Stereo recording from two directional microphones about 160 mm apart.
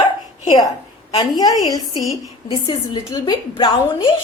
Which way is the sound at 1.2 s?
25° left (ahead or behind).